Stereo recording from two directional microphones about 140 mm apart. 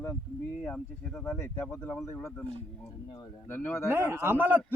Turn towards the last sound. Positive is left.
turn(degrees=-15)  # may be behind; listen again after turning